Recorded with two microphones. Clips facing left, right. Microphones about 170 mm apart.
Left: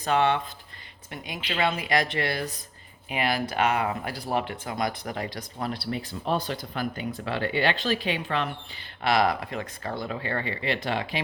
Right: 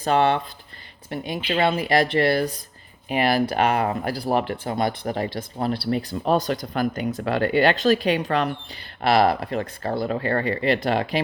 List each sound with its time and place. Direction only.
0.0 s speech: 35° right (ahead or behind)
10.2 s speech: 45° right (ahead or behind)